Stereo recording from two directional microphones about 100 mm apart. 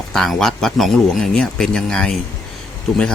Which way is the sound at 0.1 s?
5° left (ahead or behind).